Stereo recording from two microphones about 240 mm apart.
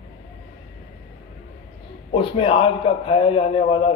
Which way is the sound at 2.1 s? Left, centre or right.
Left.